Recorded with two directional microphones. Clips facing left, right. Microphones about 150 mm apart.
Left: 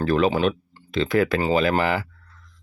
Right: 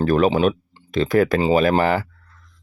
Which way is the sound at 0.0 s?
45° right (ahead or behind).